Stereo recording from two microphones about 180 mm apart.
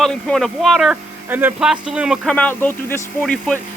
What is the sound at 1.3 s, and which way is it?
Speech, 10° right (ahead or behind).